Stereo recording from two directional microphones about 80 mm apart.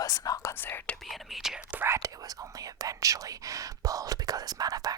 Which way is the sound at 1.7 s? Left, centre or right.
Right.